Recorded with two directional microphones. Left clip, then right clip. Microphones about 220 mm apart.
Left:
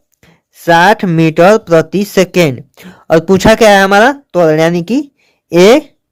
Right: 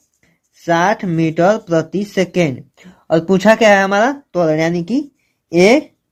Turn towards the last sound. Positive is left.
turn(degrees=35)  # may be behind; listen again after turning